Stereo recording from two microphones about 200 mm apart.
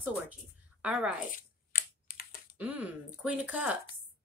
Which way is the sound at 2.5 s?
5° right (ahead or behind).